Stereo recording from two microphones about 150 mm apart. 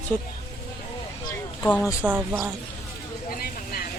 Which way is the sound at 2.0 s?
10° right (ahead or behind).